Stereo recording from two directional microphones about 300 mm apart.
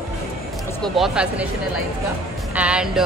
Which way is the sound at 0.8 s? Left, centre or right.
Centre.